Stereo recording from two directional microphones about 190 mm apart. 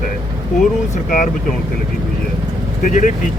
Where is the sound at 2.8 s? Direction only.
45° left (ahead or behind).